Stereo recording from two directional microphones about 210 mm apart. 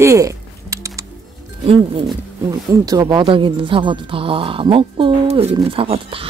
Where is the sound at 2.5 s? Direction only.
15° right (ahead or behind).